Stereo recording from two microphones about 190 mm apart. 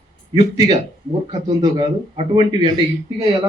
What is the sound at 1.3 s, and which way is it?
A man's voice, 25° right (ahead or behind).